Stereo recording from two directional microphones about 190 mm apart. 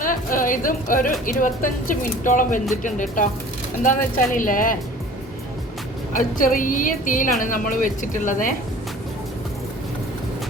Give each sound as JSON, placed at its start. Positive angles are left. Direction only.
{"t": 0.0, "sound": "a woman's voice", "side_deg": 45}
{"t": 6.1, "sound": "a woman's voice", "side_deg": 45}